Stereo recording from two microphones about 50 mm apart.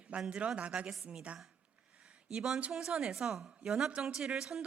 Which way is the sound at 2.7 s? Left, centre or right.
Centre.